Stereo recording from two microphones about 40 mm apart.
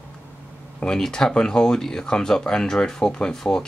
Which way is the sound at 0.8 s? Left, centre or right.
Centre.